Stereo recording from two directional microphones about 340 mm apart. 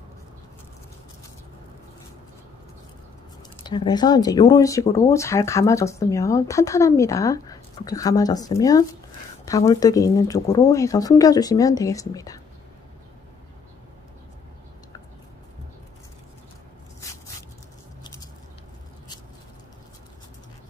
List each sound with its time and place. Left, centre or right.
3.6 s speech: centre
18.0 s biting: centre